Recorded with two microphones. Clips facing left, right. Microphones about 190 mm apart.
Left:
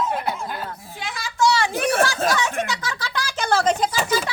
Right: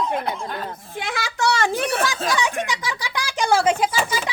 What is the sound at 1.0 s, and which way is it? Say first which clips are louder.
Speech: left 2 dB; 70° right (ahead or behind).